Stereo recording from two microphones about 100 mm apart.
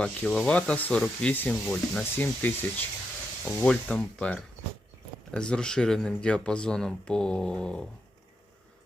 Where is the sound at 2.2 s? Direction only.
15° left (ahead or behind).